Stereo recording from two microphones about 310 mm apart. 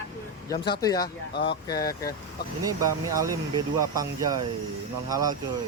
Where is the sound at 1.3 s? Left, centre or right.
Left.